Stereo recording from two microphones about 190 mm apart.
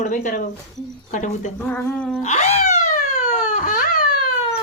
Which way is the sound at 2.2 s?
35° left (ahead or behind).